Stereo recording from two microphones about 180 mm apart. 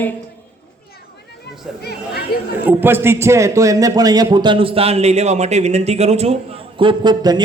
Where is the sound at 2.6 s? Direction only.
10° right (ahead or behind).